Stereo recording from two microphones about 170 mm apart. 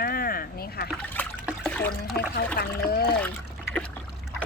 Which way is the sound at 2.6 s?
65° left (ahead or behind).